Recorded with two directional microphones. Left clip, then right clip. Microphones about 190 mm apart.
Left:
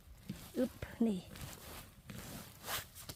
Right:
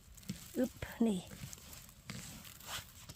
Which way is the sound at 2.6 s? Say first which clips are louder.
Left 3 dB; 55° left (ahead or behind).